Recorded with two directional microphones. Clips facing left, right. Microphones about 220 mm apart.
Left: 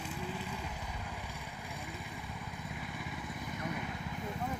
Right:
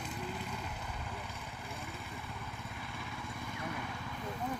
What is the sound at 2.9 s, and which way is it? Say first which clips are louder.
Vehicle: left 2 dB; 15° left (ahead or behind).